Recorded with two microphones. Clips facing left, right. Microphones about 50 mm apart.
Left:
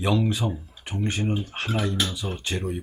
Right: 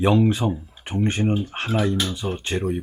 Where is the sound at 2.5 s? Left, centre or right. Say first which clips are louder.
Right 5 dB; centre.